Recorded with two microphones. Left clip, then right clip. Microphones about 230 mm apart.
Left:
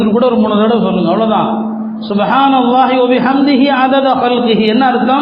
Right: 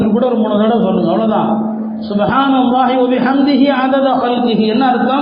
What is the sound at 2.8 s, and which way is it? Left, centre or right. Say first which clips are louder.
A man's voice: left 3 dB; left.